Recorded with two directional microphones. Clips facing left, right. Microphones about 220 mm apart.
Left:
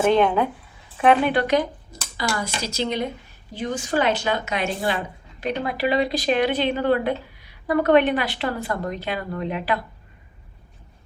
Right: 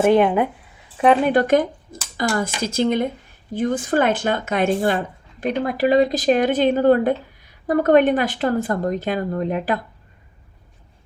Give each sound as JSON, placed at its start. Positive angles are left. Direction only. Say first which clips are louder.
{"t": 0.0, "sound": "speech", "louder": "right 3 dB", "side_deg": -10}
{"t": 1.0, "sound": "speech", "louder": "right 3 dB", "side_deg": -40}